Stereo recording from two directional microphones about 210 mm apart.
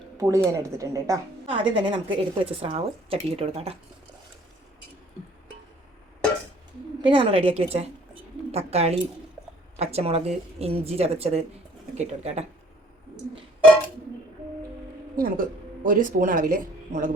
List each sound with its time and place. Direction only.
0.2 s a woman's voice: 15° right (ahead or behind)
7.0 s speech: 25° right (ahead or behind)
15.1 s speech: 40° right (ahead or behind)